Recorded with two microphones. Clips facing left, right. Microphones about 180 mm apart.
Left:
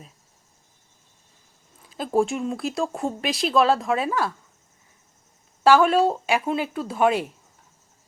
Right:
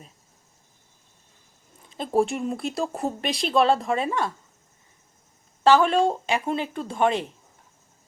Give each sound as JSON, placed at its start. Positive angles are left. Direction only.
{"t": 1.9, "sound": "speech", "side_deg": 0}
{"t": 5.6, "sound": "speech", "side_deg": 10}